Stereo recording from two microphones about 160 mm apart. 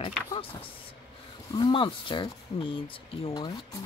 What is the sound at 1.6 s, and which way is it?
Speech, 30° left (ahead or behind).